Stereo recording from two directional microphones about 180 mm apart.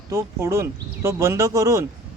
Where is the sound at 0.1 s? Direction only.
15° right (ahead or behind).